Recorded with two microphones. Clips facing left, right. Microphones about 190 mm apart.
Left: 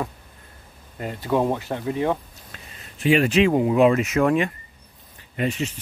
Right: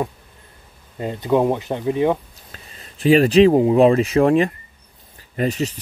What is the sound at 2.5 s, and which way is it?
Speech, 35° right (ahead or behind).